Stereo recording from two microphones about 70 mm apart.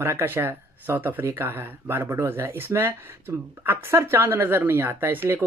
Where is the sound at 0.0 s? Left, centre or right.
Right.